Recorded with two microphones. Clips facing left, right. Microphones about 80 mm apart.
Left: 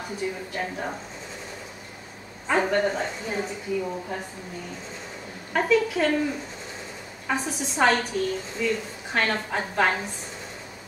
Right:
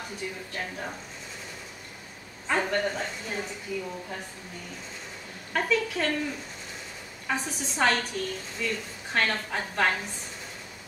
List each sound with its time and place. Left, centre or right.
0.6 s a woman's voice: centre
2.4 s a woman's voice: centre
5.5 s a woman's voice: centre
7.2 s a woman's voice: centre